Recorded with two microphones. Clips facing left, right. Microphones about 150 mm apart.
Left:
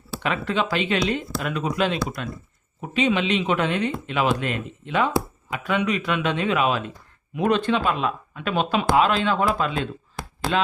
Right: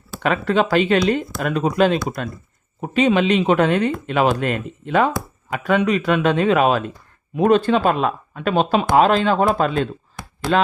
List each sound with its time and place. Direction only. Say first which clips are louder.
0.2 s speech: right 6 dB; 45° right (ahead or behind)